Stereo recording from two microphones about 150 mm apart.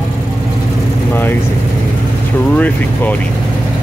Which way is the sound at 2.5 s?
10° left (ahead or behind).